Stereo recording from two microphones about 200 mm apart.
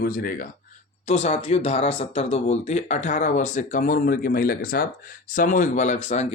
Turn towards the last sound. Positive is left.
turn(degrees=35)  # may be behind; listen again after turning